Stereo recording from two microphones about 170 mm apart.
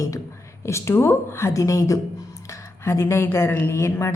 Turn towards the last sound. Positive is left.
turn(degrees=15)  # may be behind; listen again after turning